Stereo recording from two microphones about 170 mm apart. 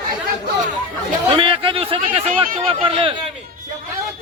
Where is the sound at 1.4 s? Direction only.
30° right (ahead or behind).